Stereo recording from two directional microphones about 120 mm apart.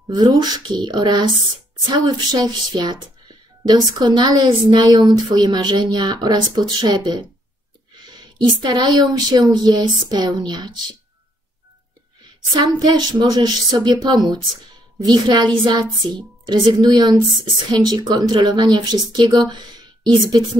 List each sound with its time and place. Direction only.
0.1 s a woman's voice: 35° right (ahead or behind)
12.6 s a woman's voice: 35° right (ahead or behind)